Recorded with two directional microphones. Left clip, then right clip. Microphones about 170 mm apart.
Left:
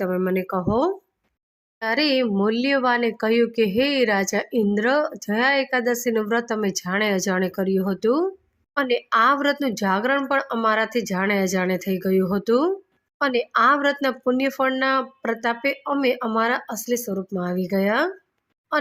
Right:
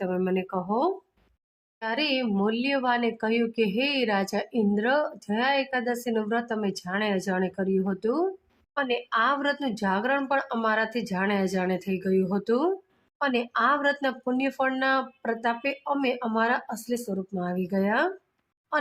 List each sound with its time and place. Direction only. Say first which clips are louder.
0.0 s speech: left 4 dB; 20° left (ahead or behind)